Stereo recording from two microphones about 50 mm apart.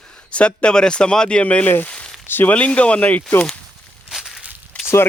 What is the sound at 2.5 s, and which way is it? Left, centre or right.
Speech, left.